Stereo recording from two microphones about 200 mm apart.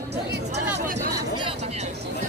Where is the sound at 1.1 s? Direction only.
25° right (ahead or behind).